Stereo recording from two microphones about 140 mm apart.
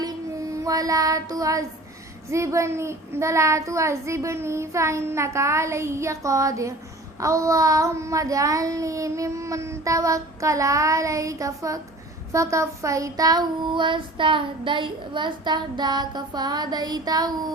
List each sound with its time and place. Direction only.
0.5 s child singing: 25° right (ahead or behind)